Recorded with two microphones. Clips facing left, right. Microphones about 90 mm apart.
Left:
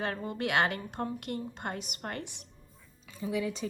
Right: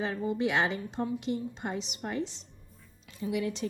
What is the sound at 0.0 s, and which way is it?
A woman's voice, 60° left (ahead or behind).